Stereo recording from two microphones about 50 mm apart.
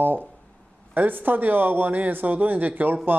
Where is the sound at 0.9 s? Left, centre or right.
Right.